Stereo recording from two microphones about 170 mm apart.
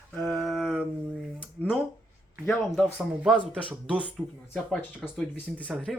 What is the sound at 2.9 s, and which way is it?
Speech, 5° right (ahead or behind).